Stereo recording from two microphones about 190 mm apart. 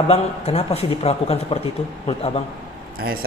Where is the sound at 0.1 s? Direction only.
35° left (ahead or behind).